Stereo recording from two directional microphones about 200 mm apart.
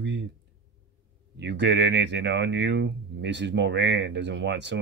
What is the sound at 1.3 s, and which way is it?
Speech, 60° right (ahead or behind).